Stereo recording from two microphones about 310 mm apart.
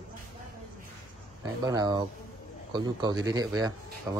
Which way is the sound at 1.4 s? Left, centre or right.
Centre.